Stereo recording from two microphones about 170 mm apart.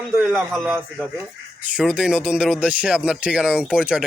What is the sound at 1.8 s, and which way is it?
Speech, 5° right (ahead or behind).